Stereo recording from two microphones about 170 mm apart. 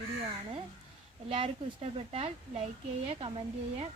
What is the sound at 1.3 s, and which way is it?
Speech, 35° right (ahead or behind).